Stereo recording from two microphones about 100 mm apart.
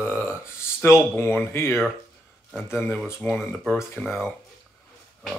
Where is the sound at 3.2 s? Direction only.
20° left (ahead or behind).